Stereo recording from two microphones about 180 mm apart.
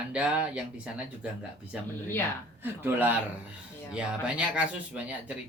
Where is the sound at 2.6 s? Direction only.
10° right (ahead or behind).